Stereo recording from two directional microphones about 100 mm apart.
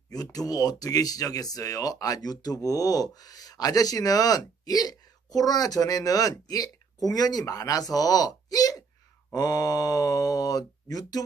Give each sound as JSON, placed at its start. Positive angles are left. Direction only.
{"t": 0.1, "sound": "speech", "side_deg": 40}